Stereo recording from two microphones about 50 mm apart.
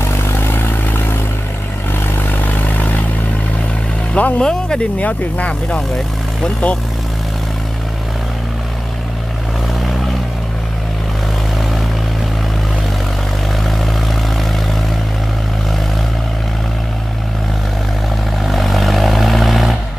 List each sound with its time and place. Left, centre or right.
0.0 s vehicle: left
4.1 s speech: left
4.4 s speech: centre
4.9 s speech: left
18.4 s vehicle: centre